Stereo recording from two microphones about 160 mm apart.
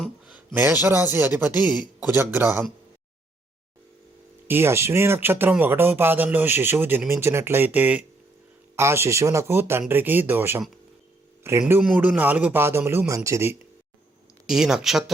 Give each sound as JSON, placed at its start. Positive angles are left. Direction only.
{"t": 0.5, "sound": "speech", "side_deg": -10}
{"t": 4.4, "sound": "speech", "side_deg": -15}
{"t": 11.6, "sound": "speech", "side_deg": -5}
{"t": 14.4, "sound": "speech", "side_deg": -5}